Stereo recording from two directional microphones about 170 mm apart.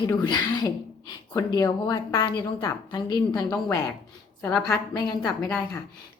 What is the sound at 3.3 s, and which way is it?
A woman's voice, 10° left (ahead or behind).